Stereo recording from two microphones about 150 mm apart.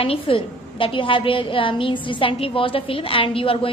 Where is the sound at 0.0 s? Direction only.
40° left (ahead or behind).